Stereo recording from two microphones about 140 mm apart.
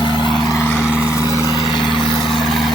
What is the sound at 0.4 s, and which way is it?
Vehicle, 20° left (ahead or behind).